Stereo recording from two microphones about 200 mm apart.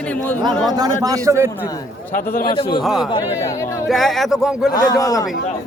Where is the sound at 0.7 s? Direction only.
20° right (ahead or behind).